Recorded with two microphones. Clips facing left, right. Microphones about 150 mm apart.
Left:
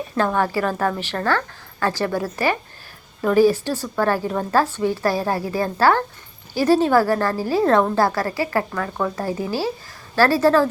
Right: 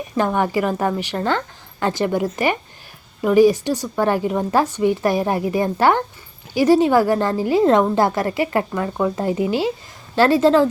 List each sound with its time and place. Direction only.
0.2 s a woman's voice: 15° right (ahead or behind)